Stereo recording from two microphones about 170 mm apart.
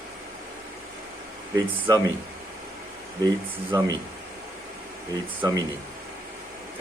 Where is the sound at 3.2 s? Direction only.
20° right (ahead or behind).